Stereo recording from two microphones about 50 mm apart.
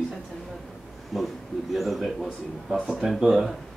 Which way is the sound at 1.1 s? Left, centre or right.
Centre.